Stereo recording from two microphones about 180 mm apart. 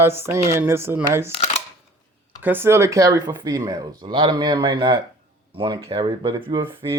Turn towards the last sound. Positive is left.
turn(degrees=-25)  # may be behind; listen again after turning